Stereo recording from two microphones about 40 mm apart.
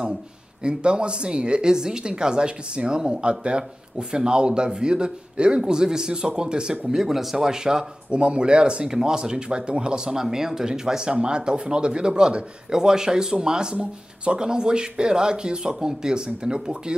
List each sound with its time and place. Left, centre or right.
0.7 s speech: right
8.1 s speech: right